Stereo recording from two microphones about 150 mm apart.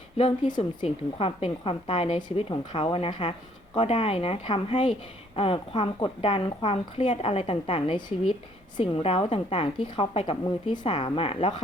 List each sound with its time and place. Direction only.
0.4 s a woman's voice: 30° left (ahead or behind)
0.9 s a woman's voice: 40° left (ahead or behind)